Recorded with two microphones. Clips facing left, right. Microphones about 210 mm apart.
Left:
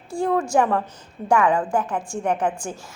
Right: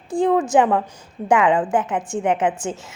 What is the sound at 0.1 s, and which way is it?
A woman's voice, 20° right (ahead or behind).